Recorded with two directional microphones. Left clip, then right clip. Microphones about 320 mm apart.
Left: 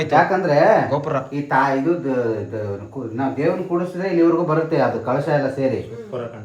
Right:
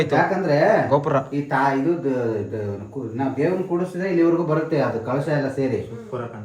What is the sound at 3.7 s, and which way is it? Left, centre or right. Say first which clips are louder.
Speech: left 2 dB; centre.